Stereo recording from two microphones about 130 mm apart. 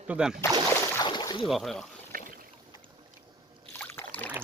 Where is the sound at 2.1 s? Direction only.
90° right.